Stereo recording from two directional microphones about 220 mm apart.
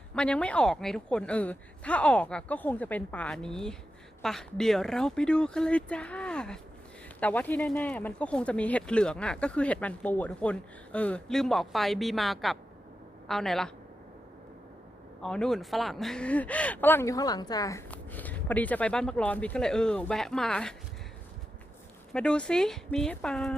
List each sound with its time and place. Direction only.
0.2 s speech: 5° left (ahead or behind)
15.2 s speech: centre (ahead or behind)
22.1 s speech: 5° left (ahead or behind)